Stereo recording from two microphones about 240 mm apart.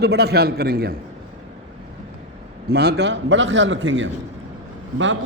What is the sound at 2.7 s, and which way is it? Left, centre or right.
A man's voice, right.